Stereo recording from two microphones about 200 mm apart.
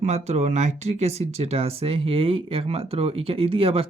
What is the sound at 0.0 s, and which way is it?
Speech, 35° right (ahead or behind).